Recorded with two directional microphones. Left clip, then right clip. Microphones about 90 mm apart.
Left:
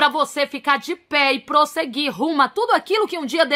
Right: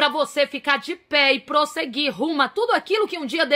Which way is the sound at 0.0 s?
45° left (ahead or behind).